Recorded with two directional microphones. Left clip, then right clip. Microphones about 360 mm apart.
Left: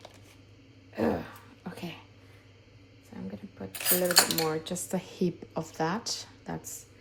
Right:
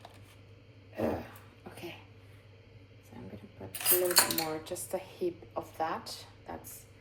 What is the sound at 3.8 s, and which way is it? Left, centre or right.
Speech, centre.